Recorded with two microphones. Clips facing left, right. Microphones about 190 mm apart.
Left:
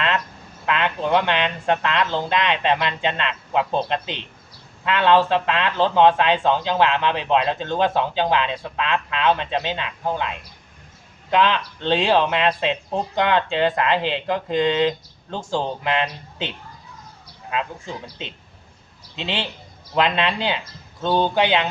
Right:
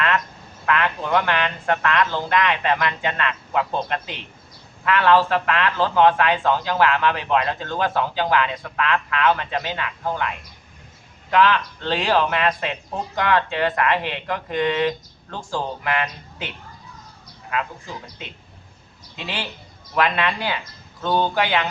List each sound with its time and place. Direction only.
0.6 s speech: 20° left (ahead or behind)